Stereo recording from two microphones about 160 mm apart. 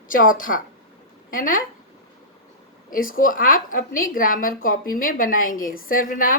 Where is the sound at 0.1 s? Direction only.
60° left (ahead or behind).